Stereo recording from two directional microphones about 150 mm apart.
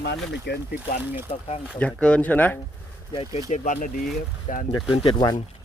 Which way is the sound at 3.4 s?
55° left (ahead or behind).